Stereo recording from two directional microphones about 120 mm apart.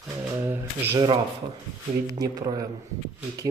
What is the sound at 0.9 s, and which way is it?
Speech, 40° right (ahead or behind).